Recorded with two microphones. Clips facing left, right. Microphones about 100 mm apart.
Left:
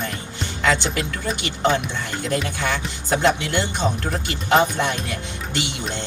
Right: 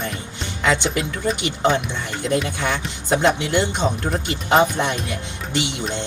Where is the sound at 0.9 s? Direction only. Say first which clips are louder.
Right 3 dB; centre (ahead or behind).